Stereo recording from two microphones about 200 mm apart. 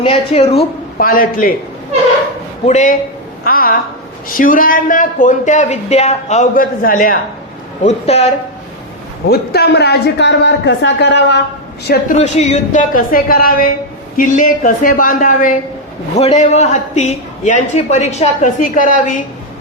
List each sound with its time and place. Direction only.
0.0 s speech: 30° left (ahead or behind)
0.9 s a woman's voice: 45° left (ahead or behind)
2.6 s a man's voice: 35° left (ahead or behind)
7.9 s a man's voice: 35° left (ahead or behind)
9.3 s a woman's voice: 50° left (ahead or behind)
11.9 s a woman's voice: 40° left (ahead or behind)